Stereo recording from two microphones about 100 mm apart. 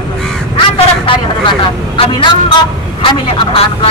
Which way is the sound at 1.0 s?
65° left (ahead or behind).